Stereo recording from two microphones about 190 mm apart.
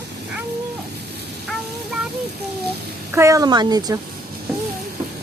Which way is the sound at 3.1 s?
15° right (ahead or behind).